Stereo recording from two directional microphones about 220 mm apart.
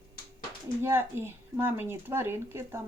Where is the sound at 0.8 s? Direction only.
10° right (ahead or behind).